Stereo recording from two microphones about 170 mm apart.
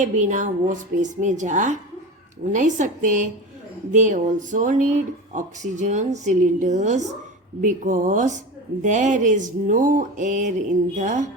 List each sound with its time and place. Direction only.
0.0 s speech: 45° right (ahead or behind)